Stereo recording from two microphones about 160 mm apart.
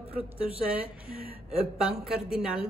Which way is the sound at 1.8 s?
5° right (ahead or behind).